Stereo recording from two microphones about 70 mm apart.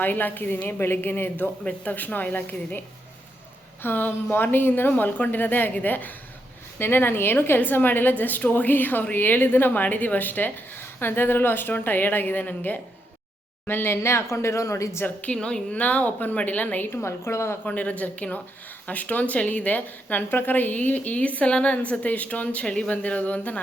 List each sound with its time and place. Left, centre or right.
0.0 s a woman's voice: left
1.6 s a woman's voice: centre
3.8 s a woman's voice: left
15.0 s a woman's voice: centre; by 17.6 s left
17.7 s a woman's voice: left